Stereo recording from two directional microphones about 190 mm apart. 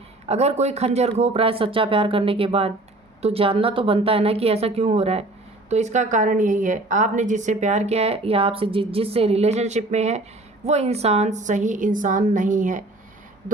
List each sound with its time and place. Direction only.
0.3 s a woman's voice: 35° right (ahead or behind)